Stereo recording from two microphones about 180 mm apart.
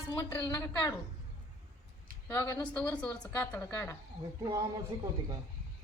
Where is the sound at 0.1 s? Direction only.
20° left (ahead or behind).